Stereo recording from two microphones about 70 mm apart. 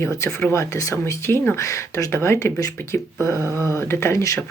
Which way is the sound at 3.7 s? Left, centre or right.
Left.